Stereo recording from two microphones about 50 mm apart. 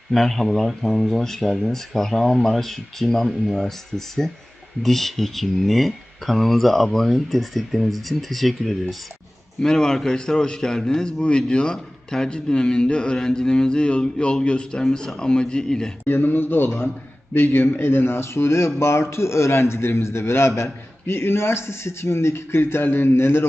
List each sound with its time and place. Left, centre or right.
0.1 s speech: centre
9.6 s a man's voice: centre
16.0 s a man's voice: left
22.8 s speech: left